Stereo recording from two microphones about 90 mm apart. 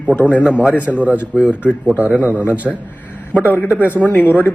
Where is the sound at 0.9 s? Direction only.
5° left (ahead or behind).